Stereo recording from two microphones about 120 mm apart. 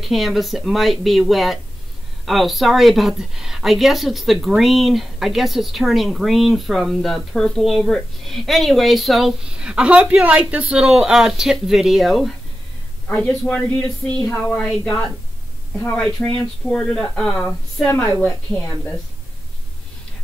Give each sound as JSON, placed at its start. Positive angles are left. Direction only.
{"t": 0.0, "sound": "a woman's voice", "side_deg": 0}
{"t": 13.1, "sound": "speech", "side_deg": 15}
{"t": 14.6, "sound": "a woman's voice", "side_deg": 5}
{"t": 16.3, "sound": "a woman's voice", "side_deg": 10}